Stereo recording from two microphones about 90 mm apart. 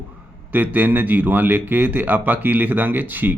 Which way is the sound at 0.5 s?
20° right (ahead or behind).